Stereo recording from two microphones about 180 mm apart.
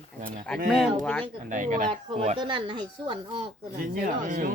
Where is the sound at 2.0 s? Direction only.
35° right (ahead or behind).